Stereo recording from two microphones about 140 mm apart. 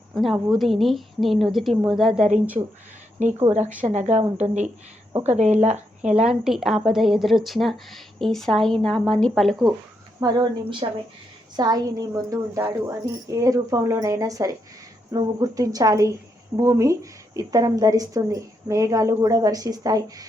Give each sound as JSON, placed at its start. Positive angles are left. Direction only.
{"t": 0.1, "sound": "a woman's voice", "side_deg": 0}
{"t": 2.6, "sound": "speech", "side_deg": -35}
{"t": 3.8, "sound": "speech", "side_deg": -55}
{"t": 6.1, "sound": "speech", "side_deg": -5}
{"t": 10.2, "sound": "a woman's voice", "side_deg": -30}